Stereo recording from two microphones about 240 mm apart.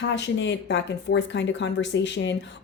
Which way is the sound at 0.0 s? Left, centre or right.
Left.